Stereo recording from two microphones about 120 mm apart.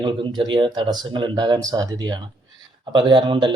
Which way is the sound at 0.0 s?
40° right (ahead or behind).